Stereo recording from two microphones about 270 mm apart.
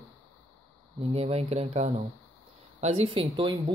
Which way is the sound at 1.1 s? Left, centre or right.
Right.